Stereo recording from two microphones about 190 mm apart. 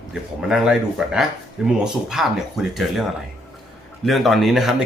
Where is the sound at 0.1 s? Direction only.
5° right (ahead or behind).